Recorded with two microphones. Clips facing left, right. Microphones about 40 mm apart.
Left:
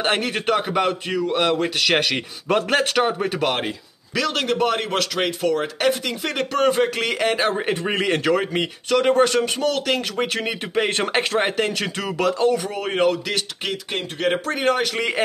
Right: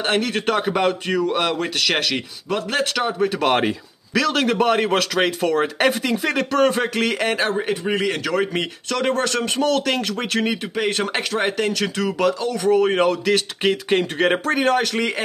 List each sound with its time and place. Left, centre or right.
0.0 s a man's voice: centre
0.3 s a man's voice: centre
1.8 s speech: centre
2.5 s speech: left
3.0 s a man's voice: centre
4.1 s a man's voice: centre
6.3 s a man's voice: centre
7.6 s a man's voice: left
8.4 s a man's voice: centre
9.4 s a man's voice: centre
12.6 s a man's voice: centre
13.8 s speech: right
14.4 s a man's voice: centre